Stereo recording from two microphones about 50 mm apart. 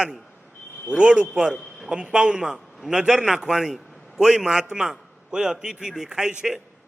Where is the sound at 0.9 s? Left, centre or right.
Right.